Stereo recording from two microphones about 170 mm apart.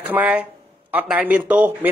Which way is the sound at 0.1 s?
10° right (ahead or behind).